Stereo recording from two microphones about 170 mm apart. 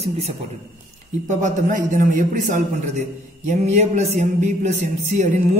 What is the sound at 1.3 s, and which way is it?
A man's voice, 45° right (ahead or behind).